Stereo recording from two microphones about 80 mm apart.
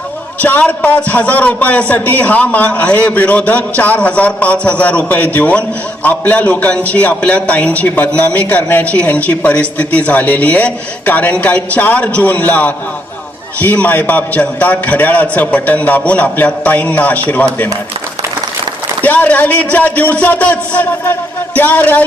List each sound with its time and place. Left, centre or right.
0.4 s a man's voice: left
19.0 s a man's voice: centre